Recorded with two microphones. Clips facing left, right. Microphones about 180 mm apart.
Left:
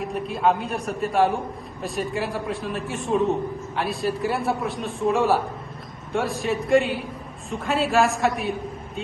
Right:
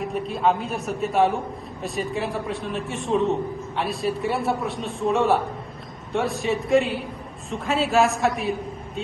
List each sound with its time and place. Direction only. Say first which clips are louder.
0.0 s a man's voice: even; centre (ahead or behind)